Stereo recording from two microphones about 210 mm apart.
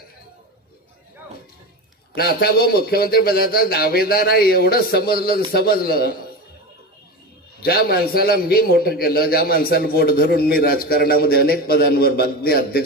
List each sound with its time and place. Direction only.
2.1 s a man's voice: 45° left (ahead or behind)
7.6 s a man's voice: 45° left (ahead or behind)